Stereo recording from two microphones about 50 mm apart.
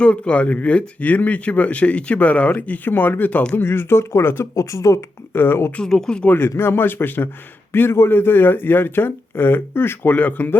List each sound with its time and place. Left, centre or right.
0.0 s speech: left
3.6 s speech: left
4.5 s speech: left
5.3 s speech: left
5.8 s speech: centre
6.2 s speech: left
10.2 s speech: left